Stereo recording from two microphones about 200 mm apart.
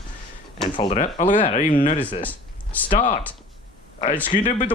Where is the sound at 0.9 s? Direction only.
40° left (ahead or behind).